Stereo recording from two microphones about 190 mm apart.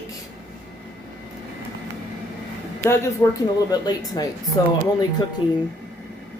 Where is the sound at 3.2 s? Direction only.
20° left (ahead or behind).